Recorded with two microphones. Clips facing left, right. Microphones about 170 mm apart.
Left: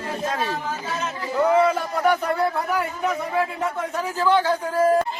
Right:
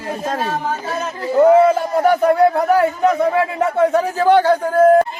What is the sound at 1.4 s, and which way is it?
Speech, 45° right (ahead or behind).